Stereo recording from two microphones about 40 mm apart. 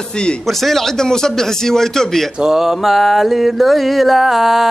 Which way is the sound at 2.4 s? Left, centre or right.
Centre.